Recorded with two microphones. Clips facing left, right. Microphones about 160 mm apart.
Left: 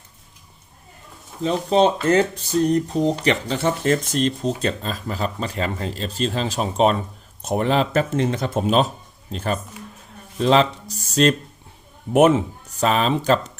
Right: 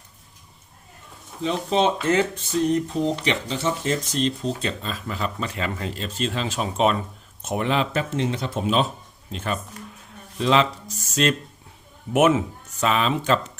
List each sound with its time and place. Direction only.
1.7 s speech: 40° left (ahead or behind)